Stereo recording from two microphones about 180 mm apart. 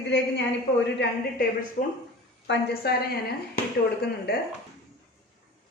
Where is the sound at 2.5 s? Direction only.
60° left (ahead or behind).